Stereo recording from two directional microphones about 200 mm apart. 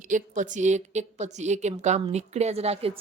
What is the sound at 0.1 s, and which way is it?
A woman's voice, 40° right (ahead or behind).